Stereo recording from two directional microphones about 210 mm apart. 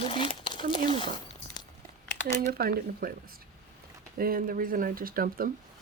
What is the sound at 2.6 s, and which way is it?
Speech, 45° right (ahead or behind).